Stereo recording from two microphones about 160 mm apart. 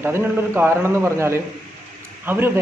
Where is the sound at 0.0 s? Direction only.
15° right (ahead or behind).